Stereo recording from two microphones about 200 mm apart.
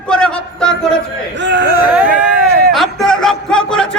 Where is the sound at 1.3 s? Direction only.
60° right (ahead or behind).